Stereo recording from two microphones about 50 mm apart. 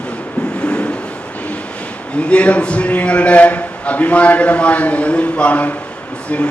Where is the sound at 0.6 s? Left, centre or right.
Centre.